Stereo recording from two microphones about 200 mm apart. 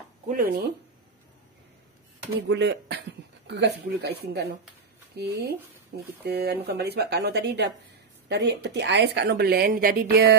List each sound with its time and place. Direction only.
0.3 s speech: 45° right (ahead or behind)
2.4 s a woman's voice: 60° right (ahead or behind)